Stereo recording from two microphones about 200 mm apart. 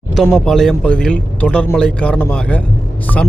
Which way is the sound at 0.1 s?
Centre (ahead or behind).